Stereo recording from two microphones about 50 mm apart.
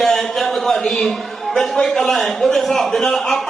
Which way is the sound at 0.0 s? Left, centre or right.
Centre.